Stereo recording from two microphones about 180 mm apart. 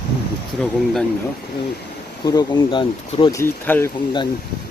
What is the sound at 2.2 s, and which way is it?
Speech, 25° left (ahead or behind).